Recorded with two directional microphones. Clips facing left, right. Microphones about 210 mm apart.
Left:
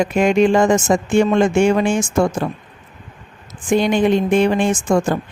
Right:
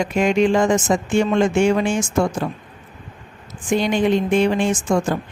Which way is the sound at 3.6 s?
50° left (ahead or behind).